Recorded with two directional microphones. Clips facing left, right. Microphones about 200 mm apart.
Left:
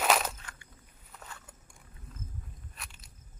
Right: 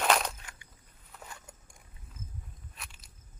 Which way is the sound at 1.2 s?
15° right (ahead or behind).